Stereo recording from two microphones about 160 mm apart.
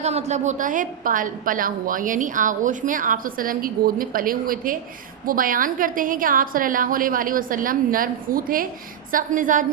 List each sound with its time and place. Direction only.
0.0 s a woman's voice: 45° right (ahead or behind)